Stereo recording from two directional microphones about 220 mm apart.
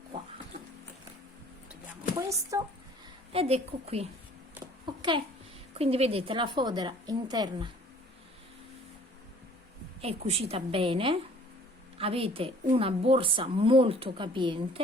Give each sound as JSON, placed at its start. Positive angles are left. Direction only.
{"t": 2.1, "sound": "speech", "side_deg": -15}
{"t": 3.3, "sound": "a woman's voice", "side_deg": -30}
{"t": 4.5, "sound": "a sound", "side_deg": -20}
{"t": 5.7, "sound": "a woman's voice", "side_deg": -25}
{"t": 10.0, "sound": "a woman's voice", "side_deg": -25}